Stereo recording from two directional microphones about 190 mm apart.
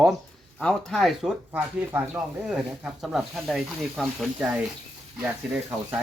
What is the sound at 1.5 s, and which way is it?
Speech, 10° right (ahead or behind).